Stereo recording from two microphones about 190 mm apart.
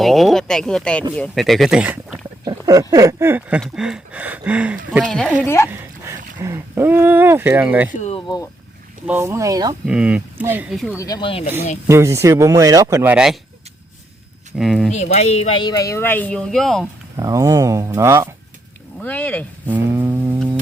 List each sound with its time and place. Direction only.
0.0 s speech: centre (ahead or behind)
2.4 s speech: 20° right (ahead or behind)
5.6 s a sound: 15° right (ahead or behind)
6.4 s speech: 15° right (ahead or behind)
7.9 s speech: 35° left (ahead or behind)
9.0 s speech: 15° right (ahead or behind)
9.8 s speech: 5° right (ahead or behind)
10.9 s speech: 20° left (ahead or behind)
11.9 s speech: 15° right (ahead or behind)
14.5 s speech: centre (ahead or behind)
14.9 s speech: 35° left (ahead or behind); by 16.8 s centre (ahead or behind)
17.2 s speech: 15° right (ahead or behind)
18.9 s speech: 10° left (ahead or behind)
19.7 s a sound: 10° right (ahead or behind)